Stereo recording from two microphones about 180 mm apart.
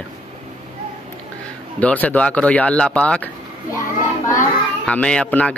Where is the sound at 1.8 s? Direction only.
10° left (ahead or behind).